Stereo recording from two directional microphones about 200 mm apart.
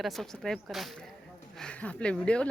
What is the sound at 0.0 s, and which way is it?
Speech, centre (ahead or behind).